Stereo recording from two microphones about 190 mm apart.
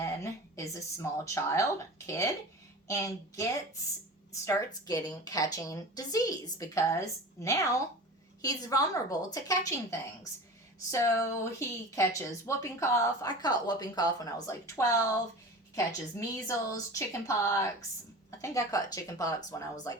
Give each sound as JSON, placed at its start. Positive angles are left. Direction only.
{"t": 0.0, "sound": "a woman's voice", "side_deg": 15}